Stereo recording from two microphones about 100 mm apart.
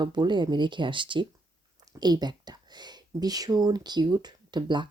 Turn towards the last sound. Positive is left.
turn(degrees=-50)  # may be behind; listen again after turning